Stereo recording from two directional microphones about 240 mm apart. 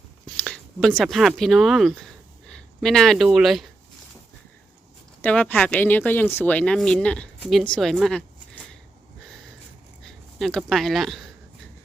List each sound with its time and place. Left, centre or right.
0.3 s speech: centre
5.2 s speech: centre
10.0 s speech: centre